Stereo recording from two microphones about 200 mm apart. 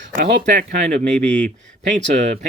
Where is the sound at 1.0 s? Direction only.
5° left (ahead or behind).